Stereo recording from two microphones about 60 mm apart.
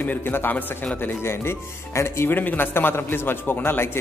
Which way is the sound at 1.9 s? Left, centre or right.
Left.